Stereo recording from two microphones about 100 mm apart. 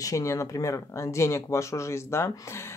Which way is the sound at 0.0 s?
30° left (ahead or behind).